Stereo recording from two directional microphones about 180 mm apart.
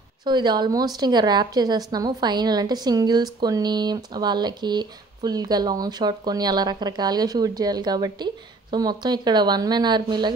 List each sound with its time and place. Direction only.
0.2 s a woman's voice: 25° right (ahead or behind)